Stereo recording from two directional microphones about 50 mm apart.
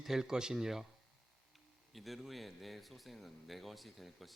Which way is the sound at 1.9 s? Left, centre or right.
Centre.